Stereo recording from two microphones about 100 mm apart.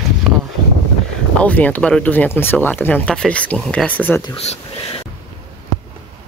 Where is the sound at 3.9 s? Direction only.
20° left (ahead or behind).